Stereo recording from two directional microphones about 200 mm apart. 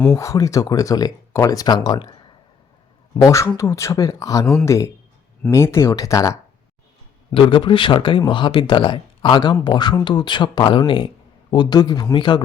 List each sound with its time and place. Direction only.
0.1 s speech: 15° left (ahead or behind)
3.2 s speech: 15° left (ahead or behind)
7.3 s speech: 25° left (ahead or behind)